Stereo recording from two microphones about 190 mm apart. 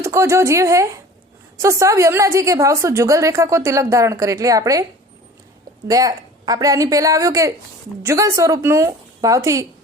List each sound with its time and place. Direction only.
0.0 s a woman's voice: 15° right (ahead or behind)
5.9 s a woman's voice: 20° right (ahead or behind)